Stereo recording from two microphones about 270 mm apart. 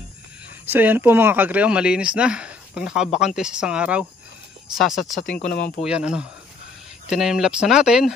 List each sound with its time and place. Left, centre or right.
0.7 s speech: centre
5.4 s speech: left
5.8 s speech: centre